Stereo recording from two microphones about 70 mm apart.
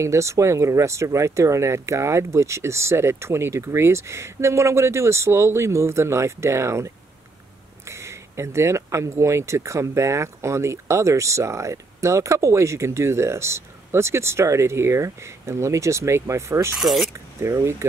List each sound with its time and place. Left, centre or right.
0.0 s speech: right
16.7 s speech: centre
17.1 s speech: right